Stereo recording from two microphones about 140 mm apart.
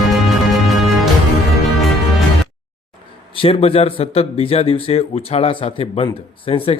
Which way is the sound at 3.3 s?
40° left (ahead or behind).